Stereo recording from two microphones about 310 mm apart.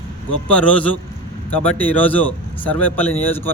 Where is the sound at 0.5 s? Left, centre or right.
Centre.